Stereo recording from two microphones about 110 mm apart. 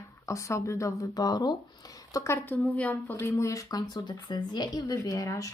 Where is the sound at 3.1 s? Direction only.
25° left (ahead or behind).